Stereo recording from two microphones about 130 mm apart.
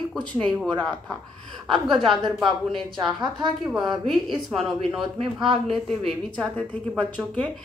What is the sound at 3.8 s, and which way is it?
A man's voice, 35° right (ahead or behind).